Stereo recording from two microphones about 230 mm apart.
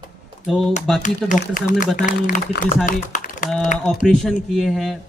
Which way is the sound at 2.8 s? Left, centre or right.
Left.